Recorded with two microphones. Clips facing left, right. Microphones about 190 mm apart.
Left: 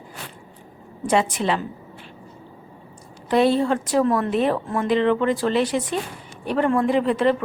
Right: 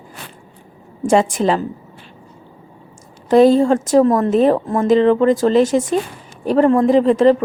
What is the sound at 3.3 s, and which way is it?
Speech, 40° right (ahead or behind).